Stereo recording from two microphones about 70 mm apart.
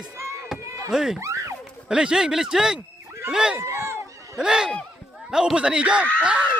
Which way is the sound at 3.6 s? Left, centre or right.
Right.